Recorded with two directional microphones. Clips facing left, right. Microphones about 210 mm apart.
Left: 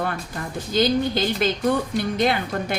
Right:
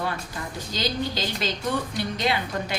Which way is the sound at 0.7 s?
50° left (ahead or behind).